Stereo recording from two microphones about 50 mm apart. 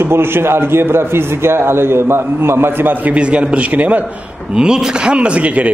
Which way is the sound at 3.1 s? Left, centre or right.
Right.